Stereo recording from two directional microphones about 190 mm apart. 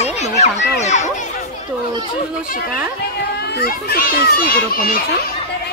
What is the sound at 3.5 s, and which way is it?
A child's voice, 55° left (ahead or behind).